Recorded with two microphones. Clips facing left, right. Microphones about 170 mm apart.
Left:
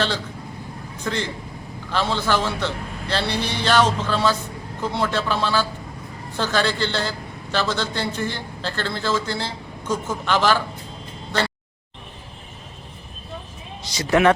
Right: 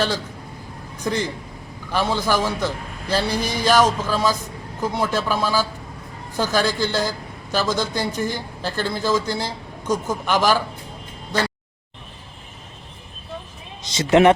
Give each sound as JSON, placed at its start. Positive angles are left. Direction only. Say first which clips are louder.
{"t": 1.0, "sound": "a man's voice", "louder": "right 3 dB", "side_deg": -10}
{"t": 13.8, "sound": "speech", "louder": "right 3 dB", "side_deg": -20}